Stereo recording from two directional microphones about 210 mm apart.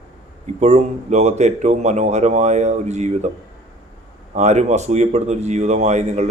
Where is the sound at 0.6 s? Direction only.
30° right (ahead or behind).